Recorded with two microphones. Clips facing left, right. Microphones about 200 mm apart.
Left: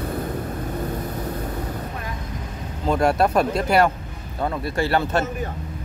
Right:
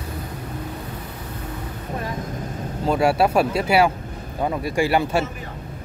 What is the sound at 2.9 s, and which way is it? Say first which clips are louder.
Speech: right 1 dB; 5° right (ahead or behind).